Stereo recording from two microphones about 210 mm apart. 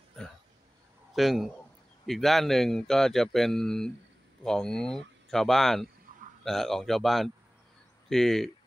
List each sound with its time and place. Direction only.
1.1 s speech: centre (ahead or behind)